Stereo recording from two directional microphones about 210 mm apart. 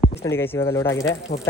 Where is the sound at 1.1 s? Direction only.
55° left (ahead or behind).